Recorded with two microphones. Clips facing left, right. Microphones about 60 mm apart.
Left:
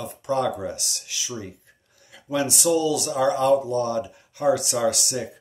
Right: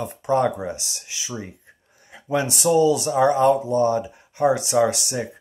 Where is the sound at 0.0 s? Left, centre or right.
Right.